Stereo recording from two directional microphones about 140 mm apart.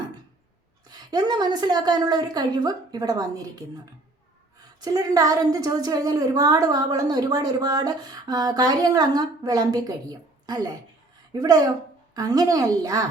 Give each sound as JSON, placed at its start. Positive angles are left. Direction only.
{"t": 0.9, "sound": "a woman's voice", "side_deg": -30}
{"t": 4.8, "sound": "a woman's voice", "side_deg": -25}